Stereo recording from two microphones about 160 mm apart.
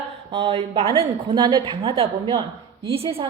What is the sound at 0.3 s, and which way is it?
A woman's voice, 35° right (ahead or behind).